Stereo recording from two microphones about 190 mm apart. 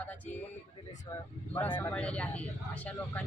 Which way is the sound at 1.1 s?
15° left (ahead or behind).